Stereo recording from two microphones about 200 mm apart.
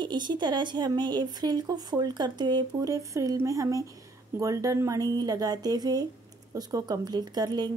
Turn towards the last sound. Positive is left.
turn(degrees=-20)  # may be behind; listen again after turning